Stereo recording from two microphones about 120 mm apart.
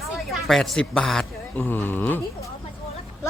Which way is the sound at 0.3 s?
5° left (ahead or behind).